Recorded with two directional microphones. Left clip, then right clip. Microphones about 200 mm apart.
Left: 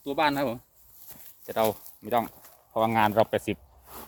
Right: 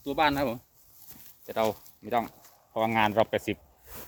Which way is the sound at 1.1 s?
30° left (ahead or behind).